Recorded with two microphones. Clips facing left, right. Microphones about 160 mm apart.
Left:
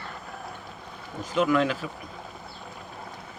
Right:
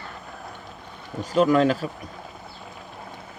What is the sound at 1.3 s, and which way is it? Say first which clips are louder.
Speech: right 5 dB; 35° right (ahead or behind).